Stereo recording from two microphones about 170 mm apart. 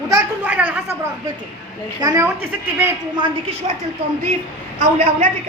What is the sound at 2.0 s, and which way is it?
Speech, 20° right (ahead or behind).